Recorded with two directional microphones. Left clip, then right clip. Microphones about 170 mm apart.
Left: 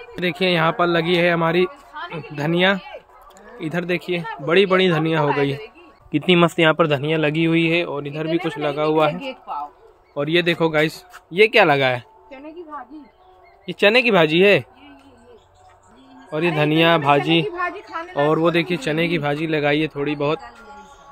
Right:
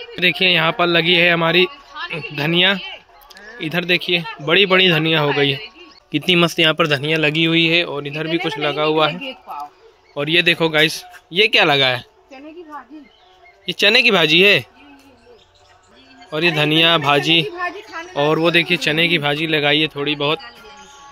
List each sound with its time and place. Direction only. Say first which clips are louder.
0.1 s speech: right 5 dB; centre (ahead or behind)
2.0 s a sound: right 3 dB; 75° left (ahead or behind)
2.3 s a man's voice: right 2 dB; 5° right (ahead or behind)
13.7 s speech: right 2 dB; 5° left (ahead or behind)
16.3 s speech: right 3 dB; centre (ahead or behind)